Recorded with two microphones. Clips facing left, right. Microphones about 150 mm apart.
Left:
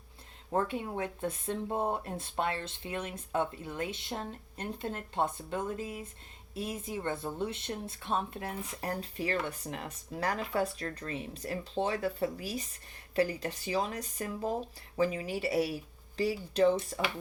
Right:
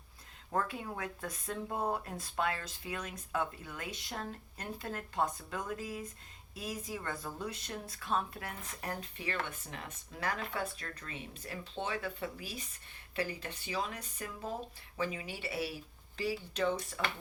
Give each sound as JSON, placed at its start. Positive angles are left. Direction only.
{"t": 0.5, "sound": "speech", "side_deg": 25}